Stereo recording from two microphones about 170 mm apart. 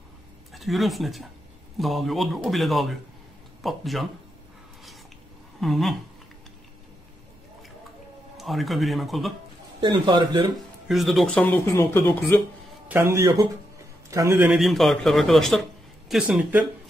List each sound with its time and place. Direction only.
0.5 s speech: centre (ahead or behind)
5.6 s speech: centre (ahead or behind)
8.4 s speech: centre (ahead or behind)
9.8 s a man's voice: 25° right (ahead or behind)
10.9 s speech: centre (ahead or behind)
12.8 s a man's voice: 15° right (ahead or behind)
14.5 s a man's voice: centre (ahead or behind)